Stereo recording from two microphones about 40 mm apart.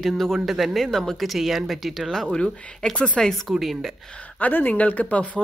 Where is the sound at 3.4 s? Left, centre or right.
Centre.